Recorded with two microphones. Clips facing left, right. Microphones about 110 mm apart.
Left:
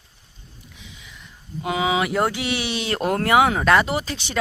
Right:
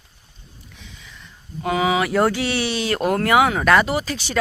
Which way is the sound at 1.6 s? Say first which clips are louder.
Right 2 dB; 20° left (ahead or behind).